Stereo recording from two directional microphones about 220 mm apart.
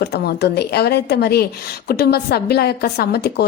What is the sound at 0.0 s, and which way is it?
A woman's voice, 50° left (ahead or behind).